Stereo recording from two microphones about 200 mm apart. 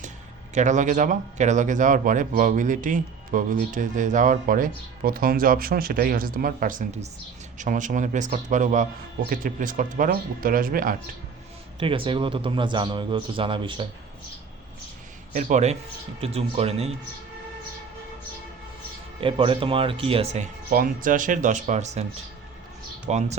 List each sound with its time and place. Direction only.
0.5 s speech: 35° right (ahead or behind)
11.8 s a man's voice: 25° right (ahead or behind)
15.3 s speech: 40° right (ahead or behind)
19.2 s speech: 25° right (ahead or behind)
23.1 s speech: 35° right (ahead or behind)